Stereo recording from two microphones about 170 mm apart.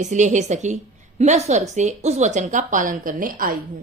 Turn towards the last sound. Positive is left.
turn(degrees=-55)  # may be behind; listen again after turning